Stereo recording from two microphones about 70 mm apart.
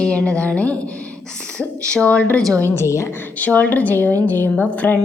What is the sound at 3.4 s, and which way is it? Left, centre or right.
A woman's voice, left.